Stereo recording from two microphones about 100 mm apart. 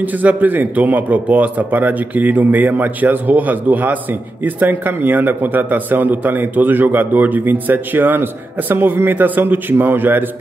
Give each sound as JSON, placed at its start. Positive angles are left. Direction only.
{"t": 0.0, "sound": "a man's voice", "side_deg": -15}